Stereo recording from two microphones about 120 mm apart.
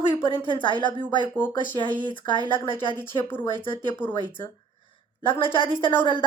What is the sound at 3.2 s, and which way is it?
Speech, 15° left (ahead or behind).